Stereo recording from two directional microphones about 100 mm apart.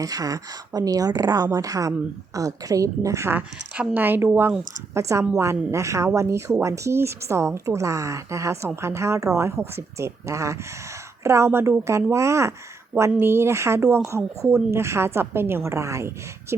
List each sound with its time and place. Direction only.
0.0 s speech: 35° right (ahead or behind)
3.3 s a woman's voice: 15° right (ahead or behind)